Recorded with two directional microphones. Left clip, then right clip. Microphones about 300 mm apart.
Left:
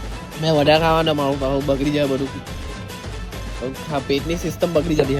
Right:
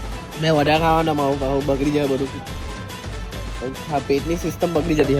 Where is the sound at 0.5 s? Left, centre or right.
Left.